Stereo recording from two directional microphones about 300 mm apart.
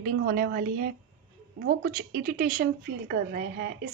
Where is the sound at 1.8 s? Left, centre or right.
Right.